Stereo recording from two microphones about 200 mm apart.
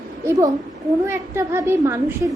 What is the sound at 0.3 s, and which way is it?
A woman's voice, 15° right (ahead or behind).